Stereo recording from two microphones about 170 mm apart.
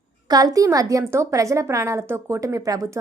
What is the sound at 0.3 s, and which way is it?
A woman's voice, 20° right (ahead or behind).